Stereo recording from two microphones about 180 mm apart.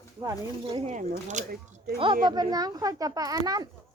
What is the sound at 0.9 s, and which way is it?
Speech, 40° right (ahead or behind).